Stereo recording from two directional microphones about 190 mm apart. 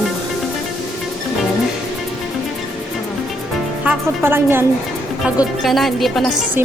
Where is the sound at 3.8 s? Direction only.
10° right (ahead or behind).